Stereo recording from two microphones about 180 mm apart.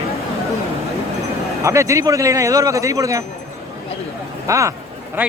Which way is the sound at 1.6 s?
15° right (ahead or behind).